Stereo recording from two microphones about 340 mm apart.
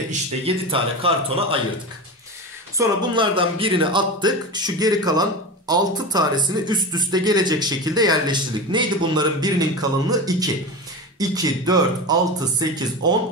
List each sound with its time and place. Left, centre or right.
0.5 s speech: centre
2.8 s speech: centre